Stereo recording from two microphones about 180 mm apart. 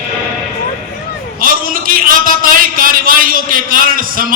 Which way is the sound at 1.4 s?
50° right (ahead or behind).